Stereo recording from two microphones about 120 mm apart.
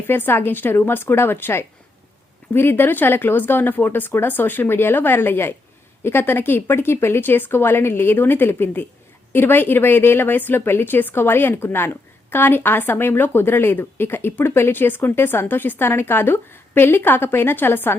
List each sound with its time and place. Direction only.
0.1 s a woman's voice: 20° left (ahead or behind)